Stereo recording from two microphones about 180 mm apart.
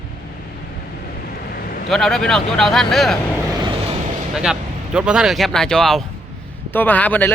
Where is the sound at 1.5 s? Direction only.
55° left (ahead or behind).